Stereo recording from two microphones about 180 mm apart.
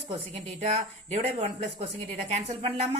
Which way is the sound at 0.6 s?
40° right (ahead or behind).